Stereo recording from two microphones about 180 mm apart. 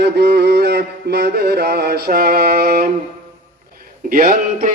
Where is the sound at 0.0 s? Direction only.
70° right (ahead or behind).